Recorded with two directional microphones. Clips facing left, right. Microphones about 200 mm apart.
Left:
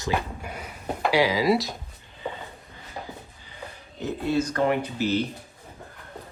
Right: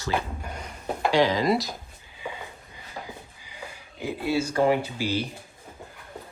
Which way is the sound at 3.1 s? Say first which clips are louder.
Left 1 dB; 10° right (ahead or behind).